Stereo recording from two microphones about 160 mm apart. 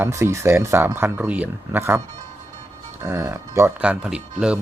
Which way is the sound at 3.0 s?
15° right (ahead or behind).